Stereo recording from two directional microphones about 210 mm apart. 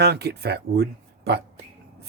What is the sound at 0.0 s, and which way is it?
Speech, 50° right (ahead or behind).